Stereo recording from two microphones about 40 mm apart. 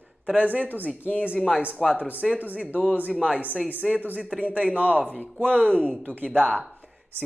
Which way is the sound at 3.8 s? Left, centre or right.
Centre.